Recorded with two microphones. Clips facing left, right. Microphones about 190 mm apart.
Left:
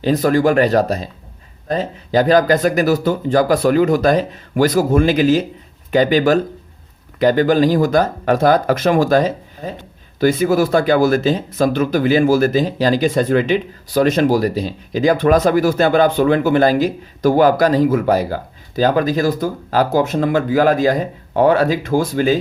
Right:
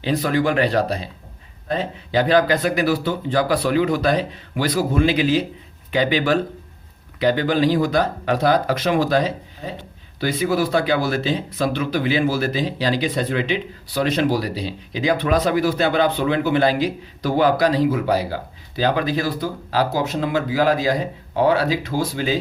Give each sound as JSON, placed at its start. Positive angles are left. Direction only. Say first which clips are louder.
{"t": 0.0, "sound": "speech", "louder": "left 6 dB", "side_deg": 45}